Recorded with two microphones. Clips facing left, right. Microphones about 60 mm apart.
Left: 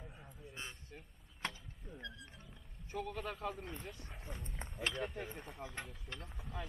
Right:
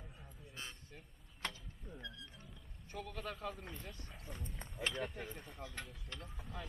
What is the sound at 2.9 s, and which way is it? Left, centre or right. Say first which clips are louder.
A man's voice: left 3 dB; centre.